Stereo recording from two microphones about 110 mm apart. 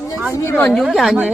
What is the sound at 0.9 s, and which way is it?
Speech, centre (ahead or behind).